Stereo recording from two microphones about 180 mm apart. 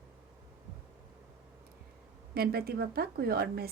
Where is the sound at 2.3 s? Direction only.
60° right (ahead or behind).